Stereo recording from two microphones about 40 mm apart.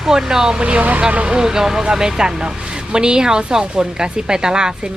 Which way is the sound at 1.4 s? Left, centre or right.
Centre.